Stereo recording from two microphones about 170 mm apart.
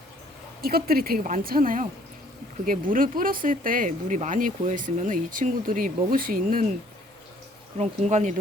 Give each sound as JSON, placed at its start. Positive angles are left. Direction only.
{"t": 0.6, "sound": "a woman's voice", "side_deg": -60}
{"t": 7.8, "sound": "speech", "side_deg": -45}